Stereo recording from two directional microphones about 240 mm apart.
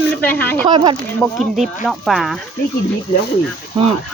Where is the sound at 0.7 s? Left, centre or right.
Centre.